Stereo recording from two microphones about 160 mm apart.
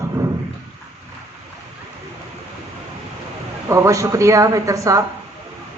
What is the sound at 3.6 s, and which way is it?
A man's voice, 20° right (ahead or behind).